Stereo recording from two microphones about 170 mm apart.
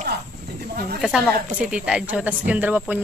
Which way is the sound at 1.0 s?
Centre (ahead or behind).